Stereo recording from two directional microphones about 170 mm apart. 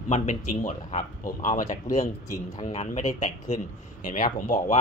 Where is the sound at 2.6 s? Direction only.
40° left (ahead or behind).